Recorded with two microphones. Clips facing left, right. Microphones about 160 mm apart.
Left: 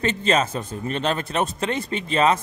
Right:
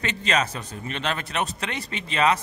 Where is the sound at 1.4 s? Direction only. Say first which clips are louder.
Left 5 dB; 50° left (ahead or behind).